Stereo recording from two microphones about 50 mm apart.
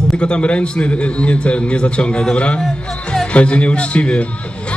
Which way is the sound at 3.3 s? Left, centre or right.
Left.